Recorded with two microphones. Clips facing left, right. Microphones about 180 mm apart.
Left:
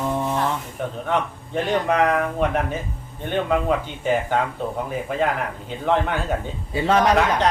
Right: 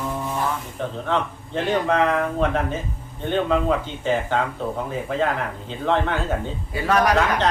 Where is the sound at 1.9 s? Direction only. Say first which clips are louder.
Left 2 dB; 10° left (ahead or behind).